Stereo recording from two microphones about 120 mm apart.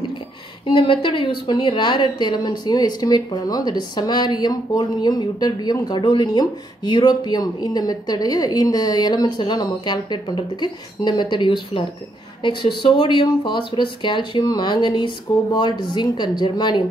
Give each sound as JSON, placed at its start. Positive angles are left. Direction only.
{"t": 0.7, "sound": "a woman's voice", "side_deg": 45}